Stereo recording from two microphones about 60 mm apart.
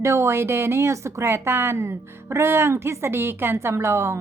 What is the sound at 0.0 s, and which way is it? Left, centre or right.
Speech, right.